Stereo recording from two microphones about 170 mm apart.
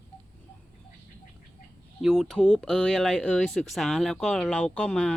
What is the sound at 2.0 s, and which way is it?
Speech, centre (ahead or behind).